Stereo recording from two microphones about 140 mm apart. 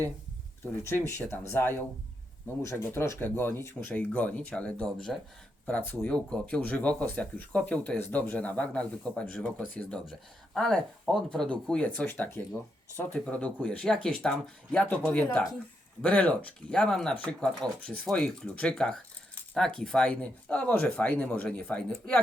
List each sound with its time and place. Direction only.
0.6 s speech: 15° left (ahead or behind)